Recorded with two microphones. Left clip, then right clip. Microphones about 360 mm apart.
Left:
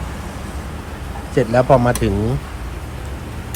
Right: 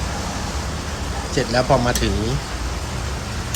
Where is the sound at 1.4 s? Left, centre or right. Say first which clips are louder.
Left 5 dB; centre.